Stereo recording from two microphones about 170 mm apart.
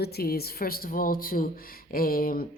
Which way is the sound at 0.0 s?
65° left (ahead or behind).